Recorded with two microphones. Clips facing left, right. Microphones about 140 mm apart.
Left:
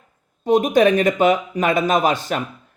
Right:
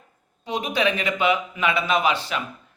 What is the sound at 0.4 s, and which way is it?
A man's voice, 45° left (ahead or behind).